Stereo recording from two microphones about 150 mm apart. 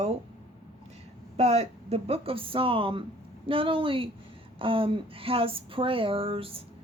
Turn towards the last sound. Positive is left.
turn(degrees=-40)  # may be behind; listen again after turning